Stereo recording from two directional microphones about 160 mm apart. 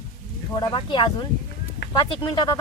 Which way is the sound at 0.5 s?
25° left (ahead or behind).